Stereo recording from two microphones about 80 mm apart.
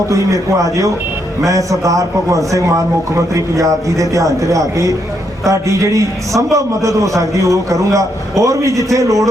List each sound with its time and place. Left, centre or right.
0.1 s a man's voice: right